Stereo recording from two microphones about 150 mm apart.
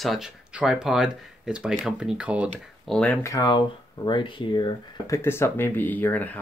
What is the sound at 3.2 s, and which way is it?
Speech, 25° left (ahead or behind).